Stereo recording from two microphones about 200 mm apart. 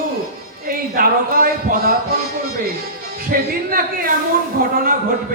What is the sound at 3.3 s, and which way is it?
Speech, 45° right (ahead or behind).